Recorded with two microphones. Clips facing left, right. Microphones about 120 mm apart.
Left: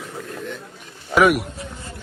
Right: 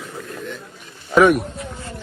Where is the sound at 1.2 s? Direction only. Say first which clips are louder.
Right 3 dB; centre (ahead or behind).